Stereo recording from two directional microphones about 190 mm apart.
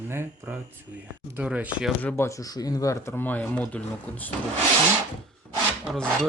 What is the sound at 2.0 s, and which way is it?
Speech, 15° left (ahead or behind).